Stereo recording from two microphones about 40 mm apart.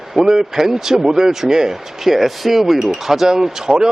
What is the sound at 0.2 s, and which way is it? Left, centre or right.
Speech, centre.